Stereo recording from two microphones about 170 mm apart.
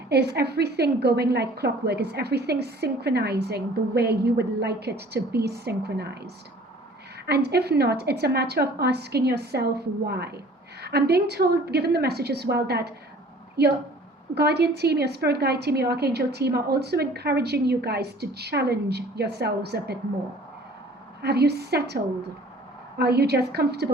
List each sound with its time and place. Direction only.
0.1 s a woman's voice: 70° right (ahead or behind)
21.2 s a woman's voice: 70° right (ahead or behind)
23.0 s a woman's voice: 70° right (ahead or behind)